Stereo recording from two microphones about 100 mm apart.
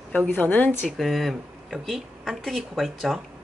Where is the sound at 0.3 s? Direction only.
20° left (ahead or behind).